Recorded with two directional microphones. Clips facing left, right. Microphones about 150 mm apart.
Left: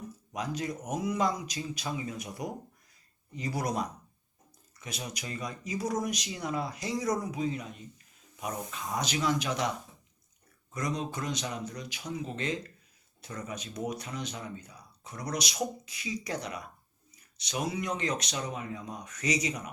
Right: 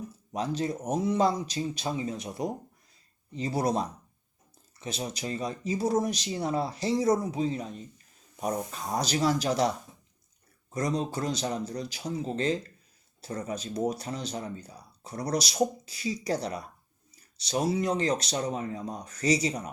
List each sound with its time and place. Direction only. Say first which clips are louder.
0.3 s speech: right 4 dB; 30° right (ahead or behind)